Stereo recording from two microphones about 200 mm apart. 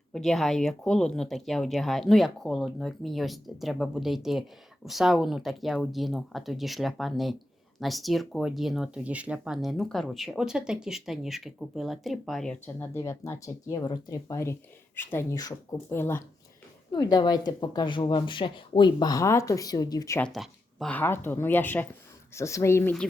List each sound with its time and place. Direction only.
0.1 s a woman's voice: centre (ahead or behind)
20.3 s speech: centre (ahead or behind)